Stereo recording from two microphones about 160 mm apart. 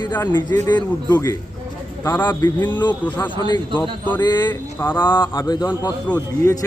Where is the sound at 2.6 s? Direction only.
10° left (ahead or behind).